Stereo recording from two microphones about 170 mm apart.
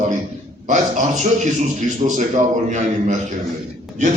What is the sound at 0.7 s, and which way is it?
A man's voice, 45° right (ahead or behind).